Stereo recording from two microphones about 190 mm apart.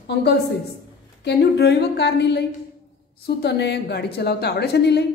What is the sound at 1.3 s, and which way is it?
A woman's voice, 60° left (ahead or behind).